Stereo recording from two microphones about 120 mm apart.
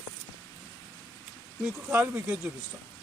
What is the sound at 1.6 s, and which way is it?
Speech, 15° right (ahead or behind).